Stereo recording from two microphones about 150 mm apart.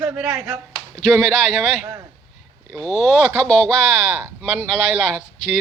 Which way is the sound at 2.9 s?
45° left (ahead or behind).